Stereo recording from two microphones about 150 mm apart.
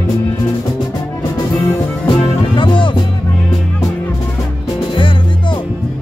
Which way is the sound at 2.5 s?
35° left (ahead or behind).